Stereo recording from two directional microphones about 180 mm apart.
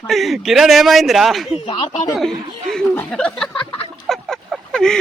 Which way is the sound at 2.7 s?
5° left (ahead or behind).